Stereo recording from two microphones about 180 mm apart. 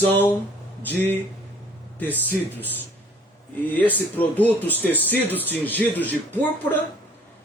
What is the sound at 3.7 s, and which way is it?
A man's voice, 10° left (ahead or behind).